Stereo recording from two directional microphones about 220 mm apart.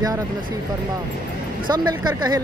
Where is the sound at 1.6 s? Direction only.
20° right (ahead or behind).